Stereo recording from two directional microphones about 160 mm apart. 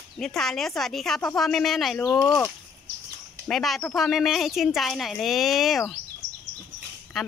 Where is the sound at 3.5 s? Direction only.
Centre (ahead or behind).